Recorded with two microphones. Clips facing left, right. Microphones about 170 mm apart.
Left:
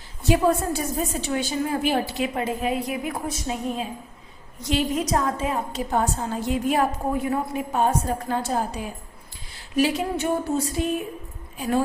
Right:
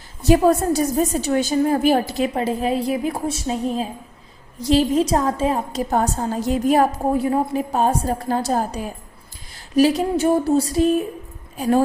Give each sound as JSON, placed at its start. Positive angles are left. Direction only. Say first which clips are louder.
{"t": 0.2, "sound": "a woman's voice", "louder": "right 5 dB", "side_deg": -40}